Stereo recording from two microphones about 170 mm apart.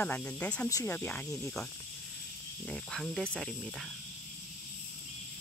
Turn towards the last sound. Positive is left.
turn(degrees=0)  # may be behind; listen again after turning